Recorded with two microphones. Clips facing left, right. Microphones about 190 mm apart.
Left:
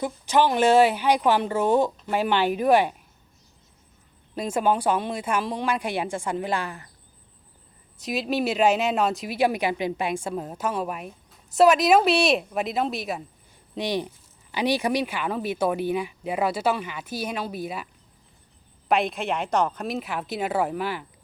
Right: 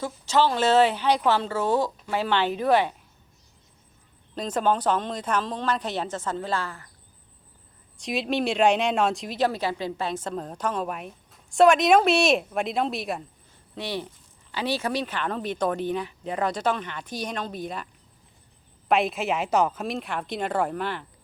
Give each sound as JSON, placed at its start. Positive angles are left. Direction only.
{"t": 0.0, "sound": "speech", "side_deg": 15}
{"t": 4.4, "sound": "speech", "side_deg": 10}
{"t": 7.9, "sound": "speech", "side_deg": 0}
{"t": 13.7, "sound": "speech", "side_deg": 15}
{"t": 18.9, "sound": "speech", "side_deg": 0}